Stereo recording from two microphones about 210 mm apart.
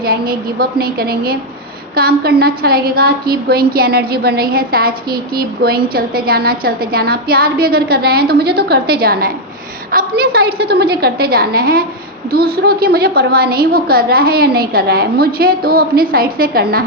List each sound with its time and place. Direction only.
0.0 s a woman's voice: 45° right (ahead or behind)